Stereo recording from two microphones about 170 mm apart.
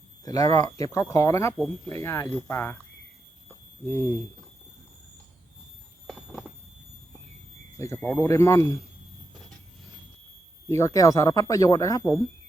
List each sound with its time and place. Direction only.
0.3 s speech: 20° left (ahead or behind)
3.8 s speech: 20° left (ahead or behind)
6.1 s a sound: centre (ahead or behind)
7.8 s speech: 15° left (ahead or behind)
10.7 s speech: 20° left (ahead or behind)